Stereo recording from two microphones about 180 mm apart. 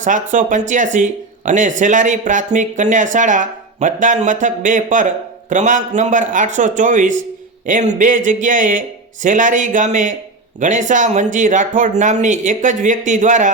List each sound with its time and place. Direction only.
0.0 s speech: 45° right (ahead or behind)